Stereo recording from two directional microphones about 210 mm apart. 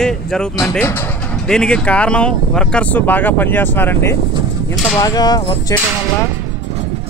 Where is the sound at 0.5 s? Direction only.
15° left (ahead or behind).